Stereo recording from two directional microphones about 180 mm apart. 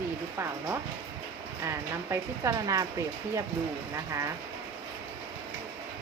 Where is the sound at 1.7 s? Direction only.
15° right (ahead or behind).